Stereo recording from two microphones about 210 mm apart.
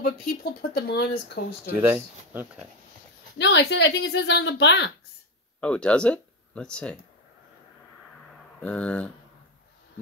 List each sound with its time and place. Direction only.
0.0 s speech: 45° left (ahead or behind)
1.7 s speech: 10° right (ahead or behind)
3.3 s speech: 55° left (ahead or behind)
5.6 s speech: 5° left (ahead or behind)
8.5 s speech: 5° left (ahead or behind)